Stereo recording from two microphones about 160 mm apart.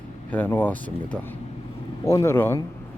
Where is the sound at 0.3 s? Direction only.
10° left (ahead or behind).